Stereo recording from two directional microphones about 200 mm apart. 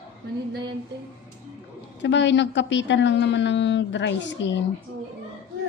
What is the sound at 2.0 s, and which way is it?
A woman's voice, 65° left (ahead or behind).